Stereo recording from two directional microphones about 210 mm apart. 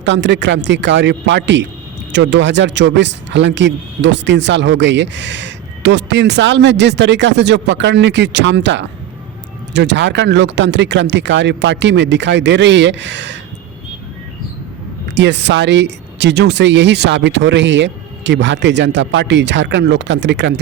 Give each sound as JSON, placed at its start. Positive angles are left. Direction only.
{"t": 0.0, "sound": "speech", "side_deg": -60}
{"t": 15.1, "sound": "speech", "side_deg": -55}